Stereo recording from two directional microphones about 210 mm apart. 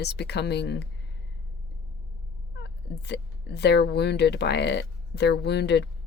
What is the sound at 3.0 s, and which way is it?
Speech, 50° left (ahead or behind).